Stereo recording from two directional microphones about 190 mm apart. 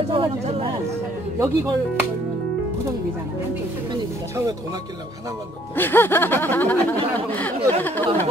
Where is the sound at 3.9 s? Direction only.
15° right (ahead or behind).